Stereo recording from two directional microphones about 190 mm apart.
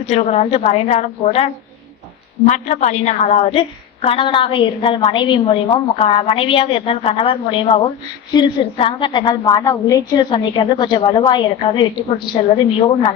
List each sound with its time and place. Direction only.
0.1 s a woman's voice: 35° left (ahead or behind)
2.5 s a woman's voice: 40° left (ahead or behind)